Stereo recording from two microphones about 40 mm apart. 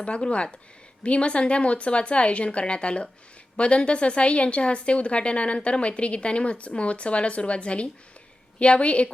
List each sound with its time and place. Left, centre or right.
0.0 s a woman's voice: left